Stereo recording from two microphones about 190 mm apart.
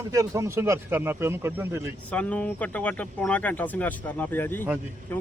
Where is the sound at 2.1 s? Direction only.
5° left (ahead or behind).